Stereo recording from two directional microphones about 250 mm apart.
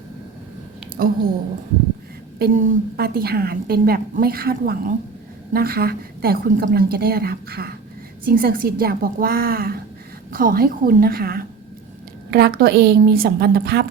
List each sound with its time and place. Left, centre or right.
1.0 s a woman's voice: right
2.4 s a woman's voice: right